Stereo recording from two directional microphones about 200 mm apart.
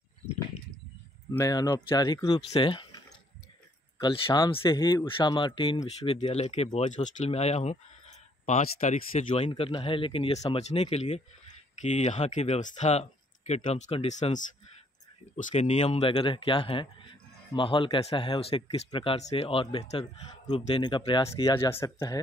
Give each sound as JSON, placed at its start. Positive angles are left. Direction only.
{"t": 1.3, "sound": "speech", "side_deg": 15}
{"t": 4.0, "sound": "speech", "side_deg": 20}